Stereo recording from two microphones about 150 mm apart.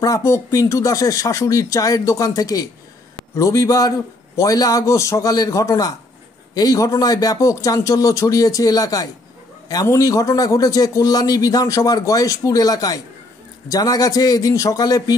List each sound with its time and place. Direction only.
0.0 s a man's voice: 20° left (ahead or behind)